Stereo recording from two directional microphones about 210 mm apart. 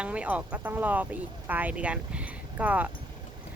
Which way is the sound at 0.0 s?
5° right (ahead or behind).